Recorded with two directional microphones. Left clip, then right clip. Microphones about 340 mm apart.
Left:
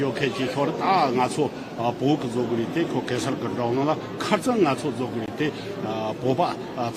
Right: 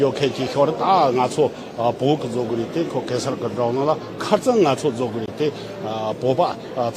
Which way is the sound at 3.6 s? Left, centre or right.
Centre.